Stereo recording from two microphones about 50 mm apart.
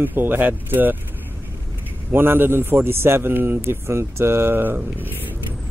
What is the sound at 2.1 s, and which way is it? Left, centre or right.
A man's voice, right.